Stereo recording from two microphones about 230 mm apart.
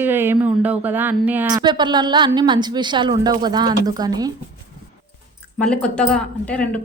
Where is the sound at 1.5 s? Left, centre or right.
Centre.